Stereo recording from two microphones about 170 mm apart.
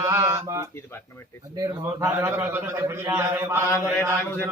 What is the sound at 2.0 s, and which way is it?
A man's voice, 15° right (ahead or behind).